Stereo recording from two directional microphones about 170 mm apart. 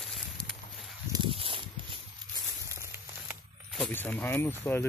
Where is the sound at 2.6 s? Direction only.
15° right (ahead or behind).